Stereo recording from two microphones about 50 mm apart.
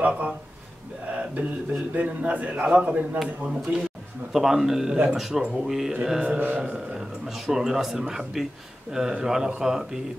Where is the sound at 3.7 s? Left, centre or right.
Right.